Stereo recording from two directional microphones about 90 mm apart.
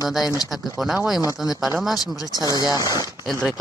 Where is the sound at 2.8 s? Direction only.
35° right (ahead or behind).